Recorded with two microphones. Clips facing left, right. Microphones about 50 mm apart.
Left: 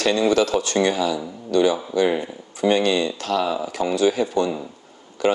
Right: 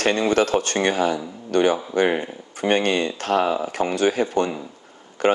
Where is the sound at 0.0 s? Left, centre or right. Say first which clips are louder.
Left 1 dB; right.